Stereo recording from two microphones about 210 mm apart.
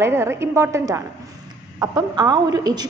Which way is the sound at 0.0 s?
10° right (ahead or behind).